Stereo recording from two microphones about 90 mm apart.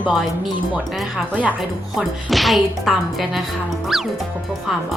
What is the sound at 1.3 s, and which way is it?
Speech, 15° right (ahead or behind).